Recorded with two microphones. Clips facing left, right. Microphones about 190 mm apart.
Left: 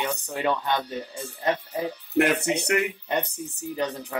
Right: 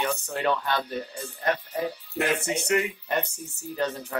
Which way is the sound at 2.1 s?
65° left (ahead or behind).